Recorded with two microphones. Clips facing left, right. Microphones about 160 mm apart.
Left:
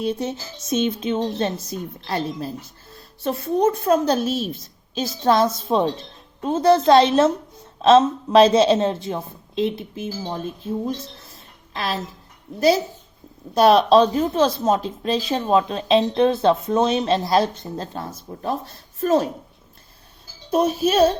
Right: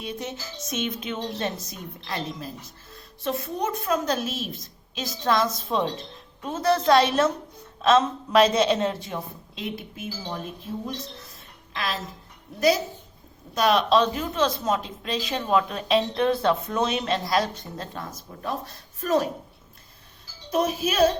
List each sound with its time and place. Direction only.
0.0 s a woman's voice: 30° left (ahead or behind)
10.8 s a sound: 30° left (ahead or behind)
12.5 s a woman's voice: 30° left (ahead or behind)
20.5 s speech: 30° left (ahead or behind)